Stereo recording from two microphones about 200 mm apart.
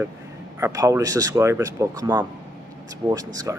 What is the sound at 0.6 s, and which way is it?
Speech, 15° right (ahead or behind).